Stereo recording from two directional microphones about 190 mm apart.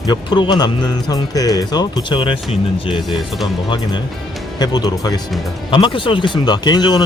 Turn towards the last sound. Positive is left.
turn(degrees=20)  # may be behind; listen again after turning